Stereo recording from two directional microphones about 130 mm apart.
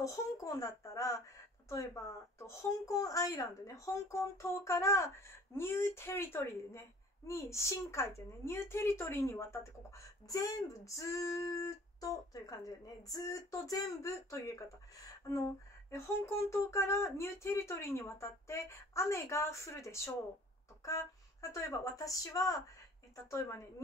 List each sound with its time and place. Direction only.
0.0 s speech: 25° left (ahead or behind)